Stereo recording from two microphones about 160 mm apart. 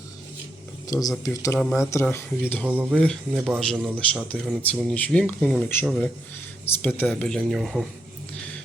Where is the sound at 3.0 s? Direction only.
Centre (ahead or behind).